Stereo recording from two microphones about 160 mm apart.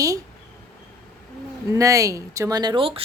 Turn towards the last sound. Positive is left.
turn(degrees=-35)  # may be behind; listen again after turning